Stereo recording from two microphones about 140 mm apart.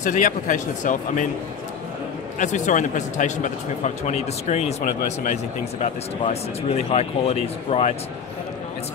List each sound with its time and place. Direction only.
0.0 s speech: 65° left (ahead or behind)
2.3 s speech: 60° left (ahead or behind); by 7.9 s 45° left (ahead or behind)